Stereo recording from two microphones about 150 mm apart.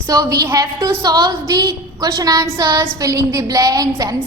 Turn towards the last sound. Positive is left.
turn(degrees=-25)  # may be behind; listen again after turning